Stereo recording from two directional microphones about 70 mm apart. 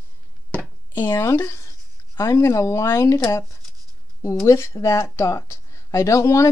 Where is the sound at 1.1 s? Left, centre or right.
Left.